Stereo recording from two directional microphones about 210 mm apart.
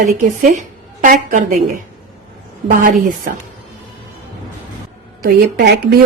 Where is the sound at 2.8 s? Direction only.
40° right (ahead or behind).